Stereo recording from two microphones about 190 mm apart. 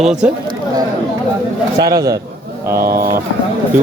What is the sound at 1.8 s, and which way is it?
Speech, 20° right (ahead or behind).